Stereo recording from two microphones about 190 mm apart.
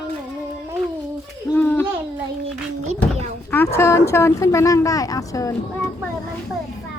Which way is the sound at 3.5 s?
10° left (ahead or behind).